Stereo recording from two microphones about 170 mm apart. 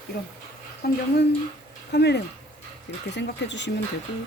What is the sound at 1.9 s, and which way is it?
Speech, 80° left.